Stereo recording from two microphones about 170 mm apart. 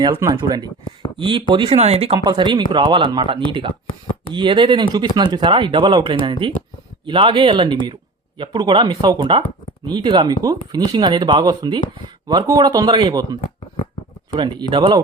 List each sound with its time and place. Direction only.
0.1 s speech: 20° right (ahead or behind); by 2.1 s 35° right (ahead or behind)
2.1 s speech: 25° right (ahead or behind)